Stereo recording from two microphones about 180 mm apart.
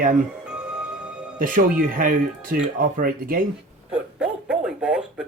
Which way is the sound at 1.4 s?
50° right (ahead or behind).